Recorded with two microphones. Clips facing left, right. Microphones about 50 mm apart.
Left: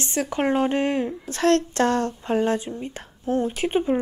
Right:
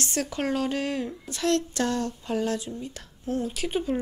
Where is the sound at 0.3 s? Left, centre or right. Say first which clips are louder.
Left 8 dB; left.